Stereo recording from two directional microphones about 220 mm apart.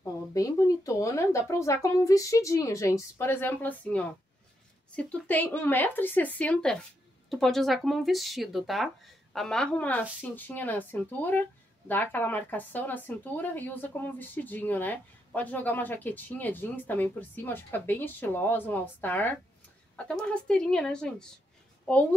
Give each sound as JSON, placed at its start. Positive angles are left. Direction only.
{"t": 0.0, "sound": "a woman's voice", "side_deg": 15}